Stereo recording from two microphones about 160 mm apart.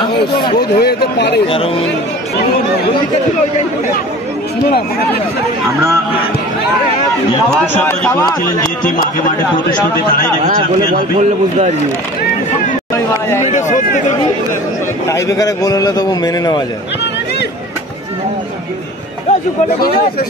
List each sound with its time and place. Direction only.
0.0 s speech: 30° left (ahead or behind)
0.7 s speech: 90° left
7.5 s speech: 10° left (ahead or behind)
11.1 s a man's voice: 45° right (ahead or behind)
13.4 s speech: 50° left (ahead or behind)
15.0 s a man's voice: 20° left (ahead or behind)